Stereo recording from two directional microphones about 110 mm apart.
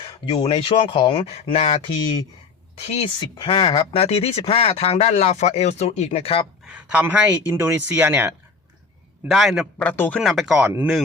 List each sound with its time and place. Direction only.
0.3 s speech: 55° left (ahead or behind)
1.5 s speech: 65° left (ahead or behind)
3.2 s speech: 50° left (ahead or behind); by 6.1 s 85° left
6.1 s speech: 60° left (ahead or behind)
6.7 s speech: 15° right (ahead or behind)
9.2 s speech: 5° right (ahead or behind)
9.7 s speech: 15° left (ahead or behind)
10.2 s speech: centre (ahead or behind)